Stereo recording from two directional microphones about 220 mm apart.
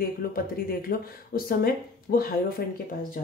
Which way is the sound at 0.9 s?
45° left (ahead or behind).